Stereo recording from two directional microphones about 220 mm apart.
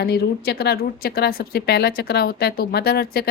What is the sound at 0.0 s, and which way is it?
A woman's voice, 45° left (ahead or behind).